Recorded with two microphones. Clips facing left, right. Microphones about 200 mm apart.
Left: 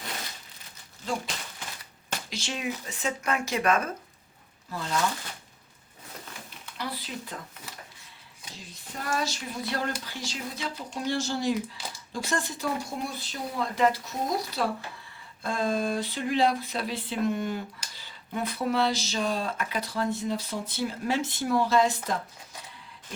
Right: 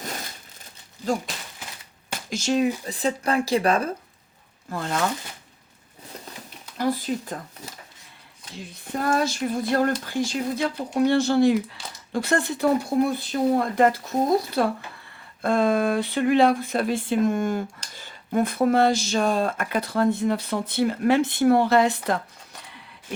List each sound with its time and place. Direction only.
2.3 s speech: 40° right (ahead or behind)
4.7 s speech: 55° right (ahead or behind)
6.7 s speech: 45° right (ahead or behind)
8.7 s speech: 55° right (ahead or behind)